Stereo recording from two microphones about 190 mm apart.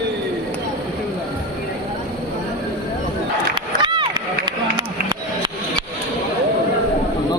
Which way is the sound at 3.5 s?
25° right (ahead or behind).